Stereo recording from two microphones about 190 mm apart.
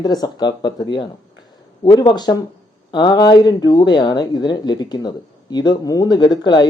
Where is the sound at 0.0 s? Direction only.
20° left (ahead or behind).